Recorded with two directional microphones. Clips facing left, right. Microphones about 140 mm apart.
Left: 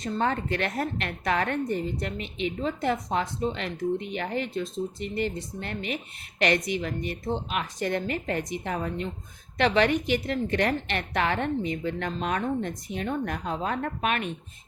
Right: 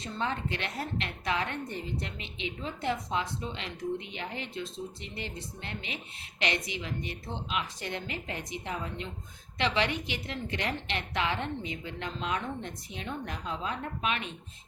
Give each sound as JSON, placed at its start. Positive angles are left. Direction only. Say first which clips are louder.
{"t": 0.0, "sound": "a woman's voice", "louder": "left 6 dB", "side_deg": 50}